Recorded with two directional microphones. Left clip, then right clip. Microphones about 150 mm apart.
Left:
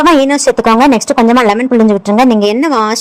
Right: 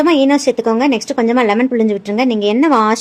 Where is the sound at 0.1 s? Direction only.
30° left (ahead or behind).